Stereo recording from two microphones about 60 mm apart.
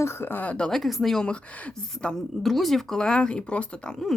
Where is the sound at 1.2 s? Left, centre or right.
Centre.